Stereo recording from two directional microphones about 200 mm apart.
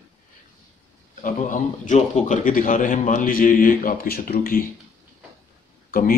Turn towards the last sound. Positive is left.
turn(degrees=45)  # may be behind; listen again after turning